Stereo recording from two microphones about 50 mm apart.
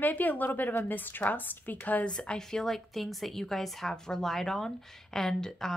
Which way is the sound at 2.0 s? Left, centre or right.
Centre.